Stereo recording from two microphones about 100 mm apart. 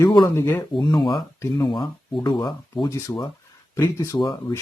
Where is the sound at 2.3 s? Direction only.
40° left (ahead or behind); by 4.3 s 25° left (ahead or behind).